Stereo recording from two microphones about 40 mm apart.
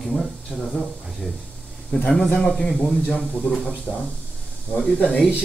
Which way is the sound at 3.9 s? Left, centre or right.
Centre.